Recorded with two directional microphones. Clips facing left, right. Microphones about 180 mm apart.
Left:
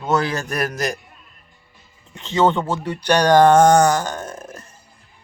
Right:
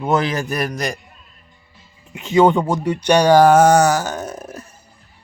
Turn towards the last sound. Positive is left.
turn(degrees=-10)  # may be behind; listen again after turning